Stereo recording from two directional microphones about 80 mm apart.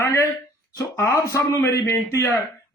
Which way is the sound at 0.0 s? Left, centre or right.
Left.